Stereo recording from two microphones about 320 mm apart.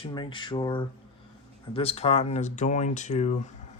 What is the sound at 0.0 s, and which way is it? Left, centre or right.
Speech, centre.